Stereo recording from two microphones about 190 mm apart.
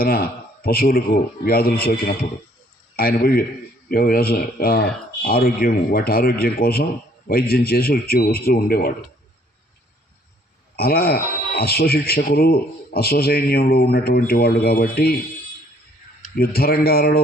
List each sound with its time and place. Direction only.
0.0 s speech: 50° left (ahead or behind)
10.8 s speech: 55° left (ahead or behind)
16.3 s speech: 55° left (ahead or behind)